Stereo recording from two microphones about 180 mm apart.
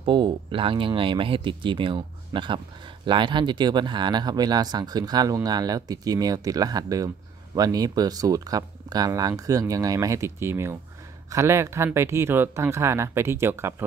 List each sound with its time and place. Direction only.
0.0 s speech: 25° right (ahead or behind)